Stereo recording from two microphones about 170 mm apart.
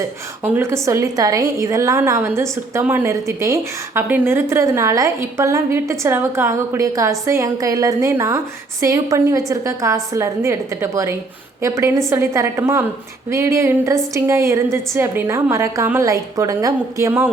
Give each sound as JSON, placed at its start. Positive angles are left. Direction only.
{"t": 0.4, "sound": "a woman's voice", "side_deg": -15}